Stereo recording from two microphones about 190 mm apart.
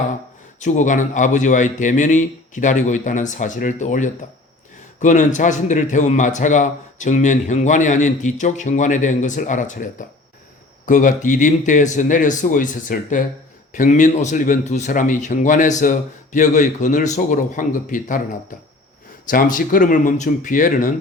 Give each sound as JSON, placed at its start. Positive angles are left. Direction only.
{"t": 0.6, "sound": "a man's voice", "side_deg": 40}
{"t": 19.3, "sound": "speech", "side_deg": 45}